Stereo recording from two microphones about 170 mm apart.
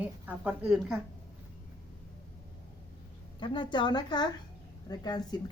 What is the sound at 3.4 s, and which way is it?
A woman's voice, 25° left (ahead or behind).